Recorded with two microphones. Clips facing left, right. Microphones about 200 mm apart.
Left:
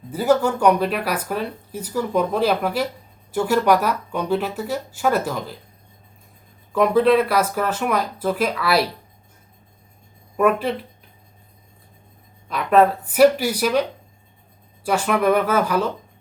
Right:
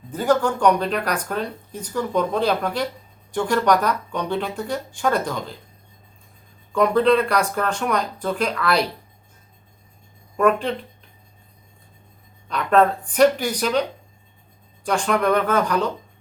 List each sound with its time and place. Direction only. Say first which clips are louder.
0.1 s speech: left 2 dB; 10° left (ahead or behind)
6.7 s speech: left 1 dB; 5° left (ahead or behind)
10.3 s speech: even; 5° left (ahead or behind)
12.5 s speech: left 1 dB; 5° left (ahead or behind)
14.8 s speech: left 1 dB; 5° left (ahead or behind)